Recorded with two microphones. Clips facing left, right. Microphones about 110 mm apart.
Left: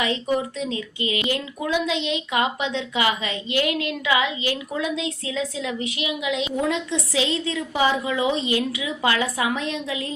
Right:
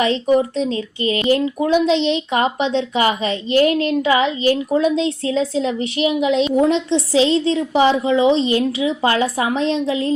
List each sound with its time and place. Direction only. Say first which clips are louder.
0.0 s speech: right 8 dB; 30° right (ahead or behind)